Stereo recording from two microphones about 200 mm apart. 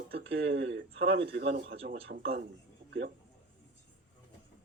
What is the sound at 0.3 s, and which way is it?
Speech, 65° right (ahead or behind).